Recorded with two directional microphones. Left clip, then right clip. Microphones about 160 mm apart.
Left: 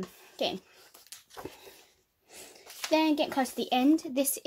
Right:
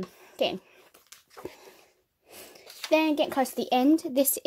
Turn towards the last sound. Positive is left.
turn(degrees=-40)  # may be behind; listen again after turning